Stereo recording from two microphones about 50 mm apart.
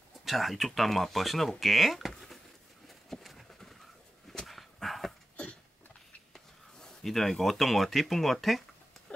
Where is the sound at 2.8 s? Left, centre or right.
Centre.